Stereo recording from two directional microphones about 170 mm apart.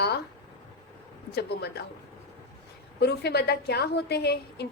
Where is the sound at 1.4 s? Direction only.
75° left (ahead or behind).